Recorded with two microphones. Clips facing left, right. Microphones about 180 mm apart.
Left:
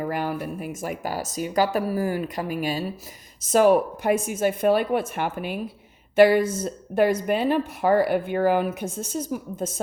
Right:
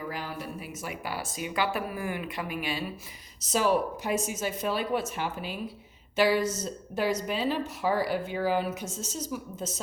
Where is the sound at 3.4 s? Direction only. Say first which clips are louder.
Left 8 dB; 55° left (ahead or behind).